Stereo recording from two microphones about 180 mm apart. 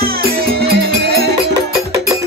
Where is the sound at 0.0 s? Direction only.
55° right (ahead or behind).